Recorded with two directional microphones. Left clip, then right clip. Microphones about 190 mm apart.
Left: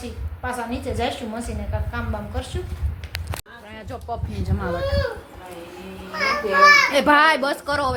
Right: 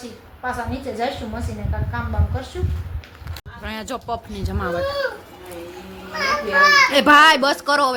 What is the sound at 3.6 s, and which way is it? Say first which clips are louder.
Speech: right 9 dB; 30° right (ahead or behind).